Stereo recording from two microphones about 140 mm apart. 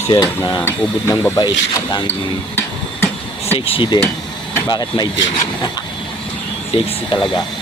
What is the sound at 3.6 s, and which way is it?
Speech, 40° left (ahead or behind).